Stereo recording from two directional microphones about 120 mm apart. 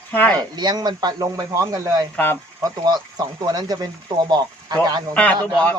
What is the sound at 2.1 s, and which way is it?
Speech, 15° left (ahead or behind).